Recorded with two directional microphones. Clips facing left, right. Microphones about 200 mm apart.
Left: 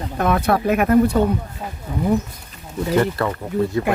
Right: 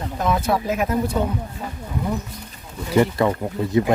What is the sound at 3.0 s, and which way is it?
Speech, 15° right (ahead or behind).